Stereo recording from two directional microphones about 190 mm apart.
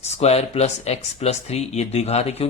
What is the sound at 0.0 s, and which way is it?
Speech, 35° left (ahead or behind).